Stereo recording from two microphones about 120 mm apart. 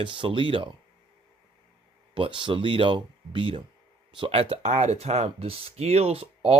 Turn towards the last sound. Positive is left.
turn(degrees=-55)  # may be behind; listen again after turning